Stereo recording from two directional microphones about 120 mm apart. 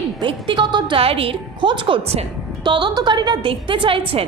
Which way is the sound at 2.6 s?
40° right (ahead or behind).